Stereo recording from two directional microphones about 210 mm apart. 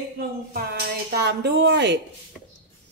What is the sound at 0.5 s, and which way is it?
Speech, 50° right (ahead or behind).